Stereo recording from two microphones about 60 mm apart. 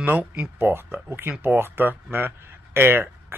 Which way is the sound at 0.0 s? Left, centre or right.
Right.